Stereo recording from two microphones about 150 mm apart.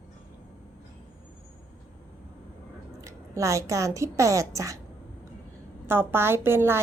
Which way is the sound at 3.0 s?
20° right (ahead or behind).